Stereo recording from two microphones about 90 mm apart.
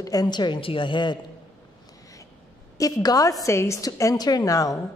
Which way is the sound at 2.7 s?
40° left (ahead or behind).